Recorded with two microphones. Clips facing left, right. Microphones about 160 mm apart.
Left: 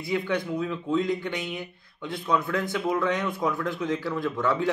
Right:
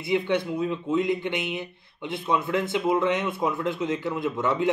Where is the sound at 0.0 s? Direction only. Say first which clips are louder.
Right 3 dB; 25° right (ahead or behind).